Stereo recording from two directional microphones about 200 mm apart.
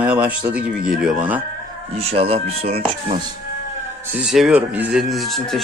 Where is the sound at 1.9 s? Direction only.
30° right (ahead or behind).